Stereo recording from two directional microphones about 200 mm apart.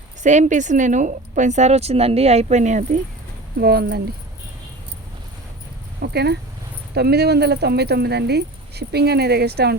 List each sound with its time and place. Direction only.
0.2 s a woman's voice: 35° right (ahead or behind)
3.6 s speech: 50° right (ahead or behind)
6.0 s speech: 55° right (ahead or behind)